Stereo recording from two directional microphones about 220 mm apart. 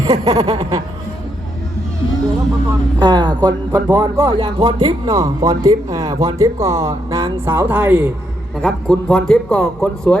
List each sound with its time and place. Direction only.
0.0 s speech: 15° right (ahead or behind)
3.0 s speech: 20° right (ahead or behind)
8.6 s a man's voice: 5° left (ahead or behind)